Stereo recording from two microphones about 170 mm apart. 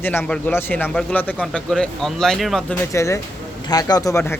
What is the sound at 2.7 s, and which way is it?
A man's voice, 15° left (ahead or behind).